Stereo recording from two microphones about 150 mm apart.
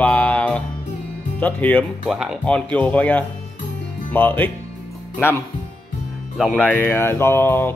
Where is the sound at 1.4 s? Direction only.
10° left (ahead or behind).